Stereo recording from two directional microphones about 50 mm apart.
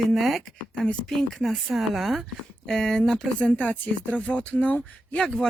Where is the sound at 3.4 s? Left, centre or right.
Left.